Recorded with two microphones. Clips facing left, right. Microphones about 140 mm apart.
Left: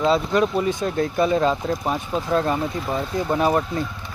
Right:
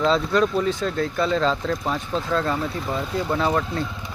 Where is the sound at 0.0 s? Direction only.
10° left (ahead or behind).